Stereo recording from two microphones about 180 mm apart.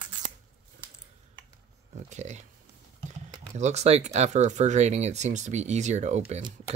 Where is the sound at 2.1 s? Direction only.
40° right (ahead or behind).